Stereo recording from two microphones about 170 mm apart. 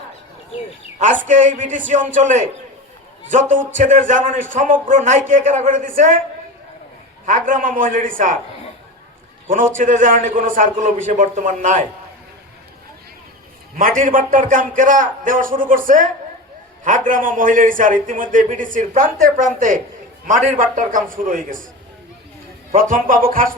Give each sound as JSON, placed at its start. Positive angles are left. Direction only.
{"t": 1.3, "sound": "a man's voice", "side_deg": -45}
{"t": 3.8, "sound": "a man's voice", "side_deg": -50}
{"t": 7.3, "sound": "a man's voice", "side_deg": -50}
{"t": 9.5, "sound": "a man's voice", "side_deg": -50}
{"t": 13.7, "sound": "a man's voice", "side_deg": -50}
{"t": 17.1, "sound": "a man's voice", "side_deg": -50}
{"t": 22.7, "sound": "a man's voice", "side_deg": -50}